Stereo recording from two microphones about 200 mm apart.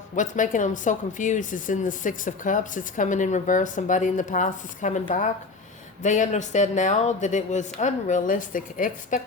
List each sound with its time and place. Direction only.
0.2 s speech: 40° left (ahead or behind)